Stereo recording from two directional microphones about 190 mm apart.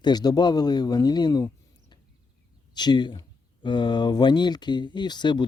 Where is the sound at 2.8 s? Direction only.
25° left (ahead or behind).